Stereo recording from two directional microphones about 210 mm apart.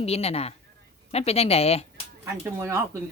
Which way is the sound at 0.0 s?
30° left (ahead or behind).